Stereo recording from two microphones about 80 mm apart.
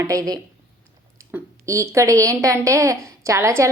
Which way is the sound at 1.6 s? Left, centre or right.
Right.